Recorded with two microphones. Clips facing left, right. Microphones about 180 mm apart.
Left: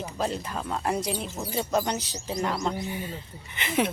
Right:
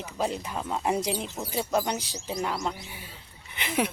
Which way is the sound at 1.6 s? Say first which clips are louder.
Left 1 dB; 5° right (ahead or behind).